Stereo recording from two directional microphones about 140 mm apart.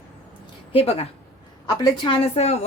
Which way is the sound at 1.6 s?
35° left (ahead or behind).